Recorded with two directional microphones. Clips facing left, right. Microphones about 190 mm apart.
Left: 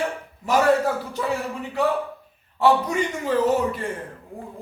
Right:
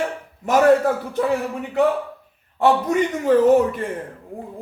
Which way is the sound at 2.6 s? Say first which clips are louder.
Right 2 dB; 50° right (ahead or behind).